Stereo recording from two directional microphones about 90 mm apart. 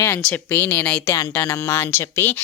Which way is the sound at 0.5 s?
20° left (ahead or behind).